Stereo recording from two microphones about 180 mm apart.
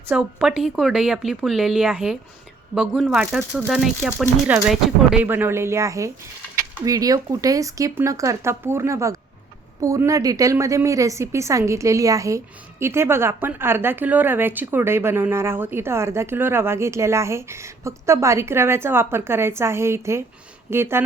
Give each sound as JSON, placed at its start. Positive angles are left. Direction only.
{"t": 0.1, "sound": "speech", "side_deg": 0}